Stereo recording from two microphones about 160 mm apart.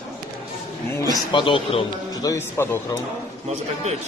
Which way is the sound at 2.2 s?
20° left (ahead or behind).